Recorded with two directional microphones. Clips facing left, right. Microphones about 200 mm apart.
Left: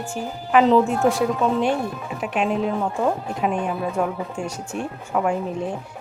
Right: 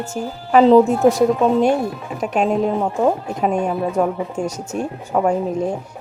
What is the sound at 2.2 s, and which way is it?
A woman's voice, 40° right (ahead or behind).